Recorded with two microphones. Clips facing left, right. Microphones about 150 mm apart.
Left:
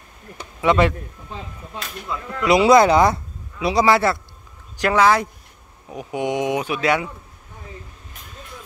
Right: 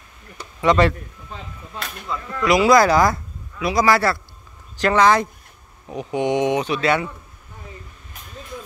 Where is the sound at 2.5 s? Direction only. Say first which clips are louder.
Left 1 dB; 25° left (ahead or behind).